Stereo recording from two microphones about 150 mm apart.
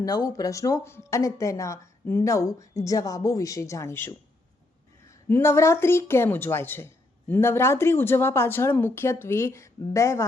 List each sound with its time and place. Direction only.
0.0 s speech: 25° left (ahead or behind)
5.3 s a woman's voice: 15° left (ahead or behind)